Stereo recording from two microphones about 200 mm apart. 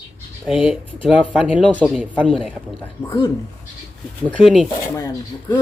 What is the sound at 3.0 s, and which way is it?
Speech, 15° left (ahead or behind).